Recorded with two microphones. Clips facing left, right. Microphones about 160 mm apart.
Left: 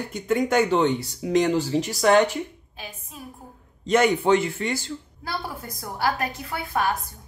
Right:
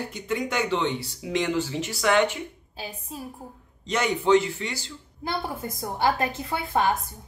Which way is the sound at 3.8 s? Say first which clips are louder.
Left 4 dB; 55° left (ahead or behind).